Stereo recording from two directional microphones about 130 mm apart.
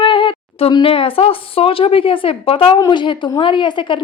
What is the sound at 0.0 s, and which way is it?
A woman's voice, 40° left (ahead or behind).